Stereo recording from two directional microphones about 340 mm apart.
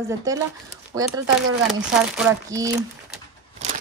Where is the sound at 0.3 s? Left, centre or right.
Centre.